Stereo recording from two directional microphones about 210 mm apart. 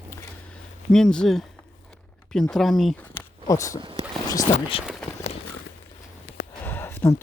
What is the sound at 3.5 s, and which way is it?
Speech, 15° left (ahead or behind).